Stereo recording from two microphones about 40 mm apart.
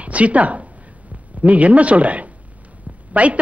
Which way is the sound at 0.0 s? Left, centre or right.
Right.